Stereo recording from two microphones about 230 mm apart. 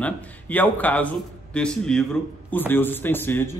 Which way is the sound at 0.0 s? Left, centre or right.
Centre.